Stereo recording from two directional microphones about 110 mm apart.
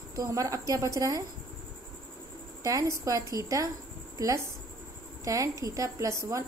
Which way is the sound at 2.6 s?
30° right (ahead or behind).